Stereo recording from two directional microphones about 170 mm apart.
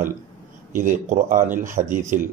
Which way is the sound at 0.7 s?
50° right (ahead or behind).